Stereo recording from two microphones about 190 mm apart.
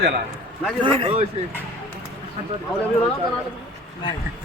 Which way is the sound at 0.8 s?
25° right (ahead or behind).